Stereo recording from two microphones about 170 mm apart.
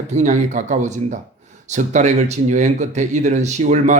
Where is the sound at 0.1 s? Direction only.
45° right (ahead or behind).